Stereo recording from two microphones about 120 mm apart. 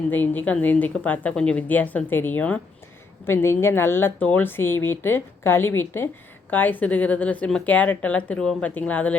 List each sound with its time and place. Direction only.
0.1 s a woman's voice: 15° left (ahead or behind)